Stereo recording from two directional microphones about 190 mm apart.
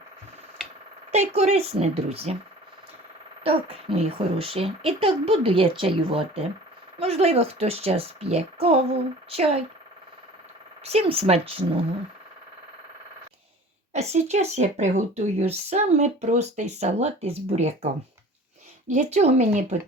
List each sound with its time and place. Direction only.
1.1 s speech: 35° right (ahead or behind)
3.4 s speech: 30° right (ahead or behind)
10.8 s speech: 30° right (ahead or behind)
13.9 s speech: 35° right (ahead or behind)
18.9 s speech: 35° right (ahead or behind)